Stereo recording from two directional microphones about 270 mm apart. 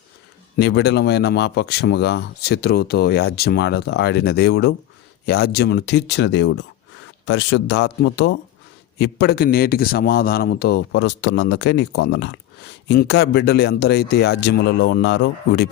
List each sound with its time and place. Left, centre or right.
0.5 s speech: left